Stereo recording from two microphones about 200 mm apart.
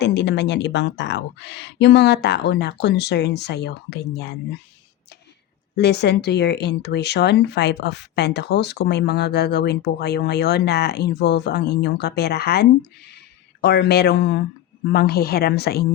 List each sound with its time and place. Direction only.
0.0 s speech: 60° left (ahead or behind)
5.7 s a woman's voice: 55° left (ahead or behind)